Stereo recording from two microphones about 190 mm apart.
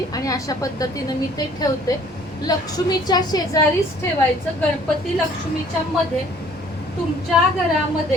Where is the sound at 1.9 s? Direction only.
20° left (ahead or behind).